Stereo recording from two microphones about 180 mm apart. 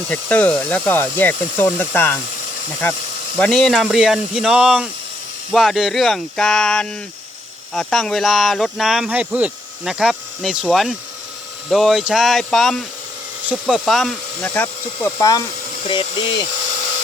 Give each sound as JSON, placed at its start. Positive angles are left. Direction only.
{"t": 0.1, "sound": "speech", "side_deg": 5}
{"t": 3.3, "sound": "speech", "side_deg": 0}